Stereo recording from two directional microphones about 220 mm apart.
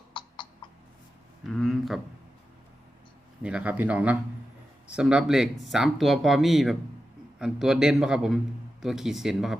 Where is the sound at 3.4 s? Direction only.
5° right (ahead or behind).